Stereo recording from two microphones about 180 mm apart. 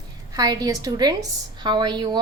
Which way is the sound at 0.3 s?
20° right (ahead or behind).